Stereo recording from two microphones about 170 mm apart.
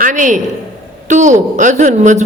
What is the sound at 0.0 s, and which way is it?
A woman's voice, 50° right (ahead or behind).